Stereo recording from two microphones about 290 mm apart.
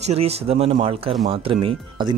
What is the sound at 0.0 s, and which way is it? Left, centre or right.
Speech, right.